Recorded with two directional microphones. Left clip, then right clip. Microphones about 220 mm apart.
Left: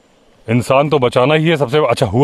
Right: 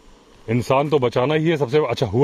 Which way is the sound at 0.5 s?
30° left (ahead or behind).